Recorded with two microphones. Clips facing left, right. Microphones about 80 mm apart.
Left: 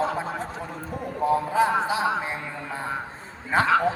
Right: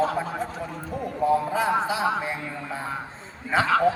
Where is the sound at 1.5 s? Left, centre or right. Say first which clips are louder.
Left 2 dB; left.